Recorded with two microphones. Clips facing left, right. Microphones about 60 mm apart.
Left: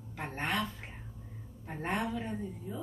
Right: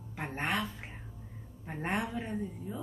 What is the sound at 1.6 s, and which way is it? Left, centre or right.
A woman's voice, centre.